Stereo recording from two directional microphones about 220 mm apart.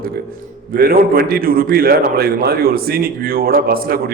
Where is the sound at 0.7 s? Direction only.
45° right (ahead or behind).